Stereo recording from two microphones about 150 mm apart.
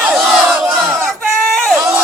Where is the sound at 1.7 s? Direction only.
10° right (ahead or behind).